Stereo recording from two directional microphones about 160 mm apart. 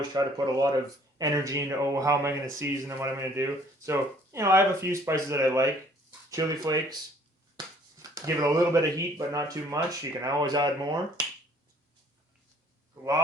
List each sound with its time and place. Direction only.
0.1 s speech: 25° right (ahead or behind)